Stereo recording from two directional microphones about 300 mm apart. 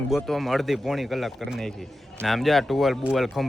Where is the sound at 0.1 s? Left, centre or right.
Centre.